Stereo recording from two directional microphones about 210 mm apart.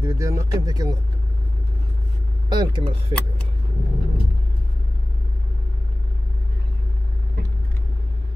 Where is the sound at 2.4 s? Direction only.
20° right (ahead or behind).